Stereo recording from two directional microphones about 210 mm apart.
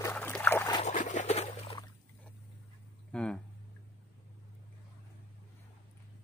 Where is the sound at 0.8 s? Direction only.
35° left (ahead or behind).